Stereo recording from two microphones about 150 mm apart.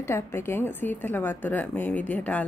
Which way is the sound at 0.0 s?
15° left (ahead or behind).